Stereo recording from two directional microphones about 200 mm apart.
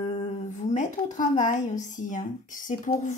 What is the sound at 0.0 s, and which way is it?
A woman's voice, 35° left (ahead or behind).